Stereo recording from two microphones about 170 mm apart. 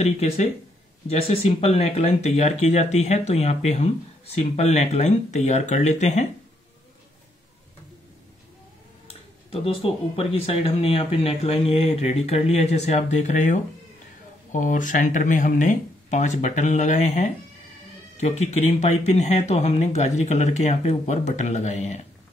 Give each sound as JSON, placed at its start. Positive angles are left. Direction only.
{"t": 0.0, "sound": "speech", "side_deg": 40}
{"t": 9.0, "sound": "speech", "side_deg": 35}